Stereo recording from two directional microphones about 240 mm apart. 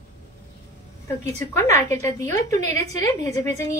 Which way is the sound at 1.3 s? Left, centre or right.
Centre.